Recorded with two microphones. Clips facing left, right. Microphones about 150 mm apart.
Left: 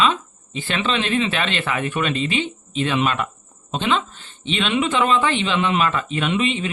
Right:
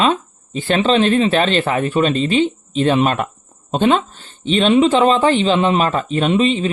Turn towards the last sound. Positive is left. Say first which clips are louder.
# right 6 dB
turn(degrees=-35)  # may be behind; listen again after turning